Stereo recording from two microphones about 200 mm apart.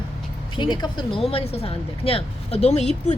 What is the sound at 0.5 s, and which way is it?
Speech, 25° left (ahead or behind).